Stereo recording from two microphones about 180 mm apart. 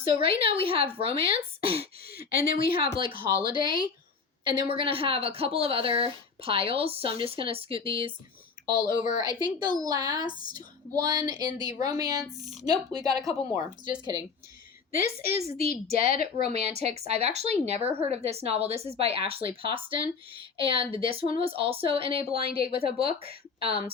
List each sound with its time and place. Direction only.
0.1 s speech: 30° right (ahead or behind)
2.0 s speech: 55° left (ahead or behind)
2.6 s a woman's voice: 30° right (ahead or behind)
9.0 s a woman's voice: 45° left (ahead or behind)
9.4 s a woman's voice: 25° right (ahead or behind)
15.3 s speech: 35° right (ahead or behind)
16.1 s speech: 55° left (ahead or behind)
16.5 s speech: 35° right (ahead or behind)